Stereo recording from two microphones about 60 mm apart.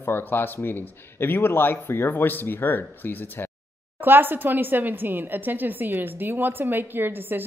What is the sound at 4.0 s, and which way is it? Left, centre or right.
Speech, right.